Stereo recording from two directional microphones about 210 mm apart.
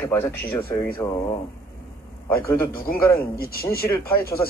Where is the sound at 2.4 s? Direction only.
10° left (ahead or behind).